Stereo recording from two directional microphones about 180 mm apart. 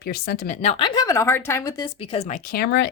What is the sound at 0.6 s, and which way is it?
Speech, 30° left (ahead or behind).